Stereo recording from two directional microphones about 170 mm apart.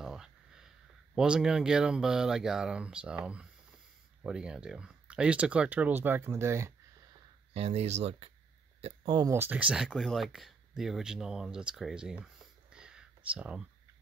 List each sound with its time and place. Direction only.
0.0 s speech: 5° right (ahead or behind)
7.5 s speech: 35° right (ahead or behind); by 13.7 s 5° right (ahead or behind)